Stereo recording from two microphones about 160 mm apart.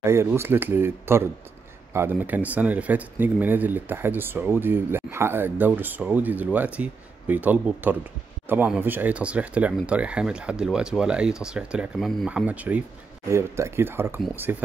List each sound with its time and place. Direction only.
0.0 s speech: 15° right (ahead or behind)